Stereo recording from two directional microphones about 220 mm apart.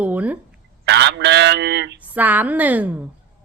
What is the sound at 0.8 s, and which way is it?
Speech, 50° right (ahead or behind).